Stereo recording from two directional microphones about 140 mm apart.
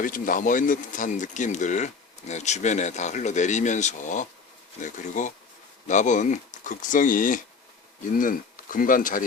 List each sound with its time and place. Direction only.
0.0 s speech: 75° left (ahead or behind)